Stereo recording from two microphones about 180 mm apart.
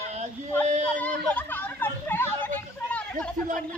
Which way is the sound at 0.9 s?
10° left (ahead or behind).